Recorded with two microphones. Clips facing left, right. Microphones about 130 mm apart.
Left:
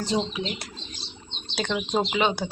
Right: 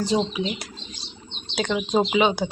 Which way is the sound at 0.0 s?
10° right (ahead or behind).